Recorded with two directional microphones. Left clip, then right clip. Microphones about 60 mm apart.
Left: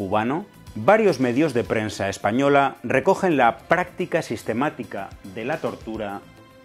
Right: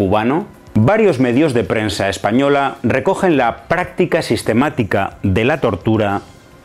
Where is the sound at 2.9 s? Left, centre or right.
Centre.